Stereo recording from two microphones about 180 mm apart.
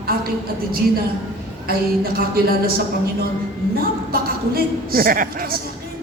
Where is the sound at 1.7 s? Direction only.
55° right (ahead or behind).